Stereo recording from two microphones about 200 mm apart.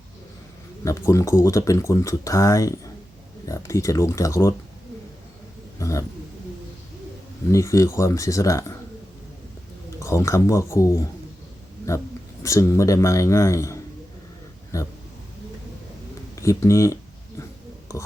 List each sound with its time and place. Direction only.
0.9 s speech: 15° left (ahead or behind)
5.8 s speech: 15° left (ahead or behind)
7.5 s speech: 15° left (ahead or behind)
10.0 s speech: 15° left (ahead or behind)
12.4 s speech: 15° left (ahead or behind)
16.3 s a sound: 15° left (ahead or behind)